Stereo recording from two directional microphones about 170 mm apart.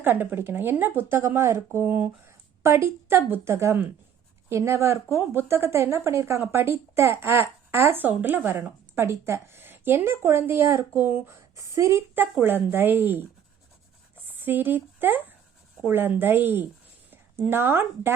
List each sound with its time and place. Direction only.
0.0 s speech: 10° right (ahead or behind)
14.3 s speech: 10° right (ahead or behind)